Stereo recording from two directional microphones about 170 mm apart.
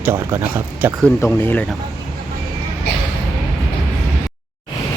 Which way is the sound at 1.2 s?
10° left (ahead or behind).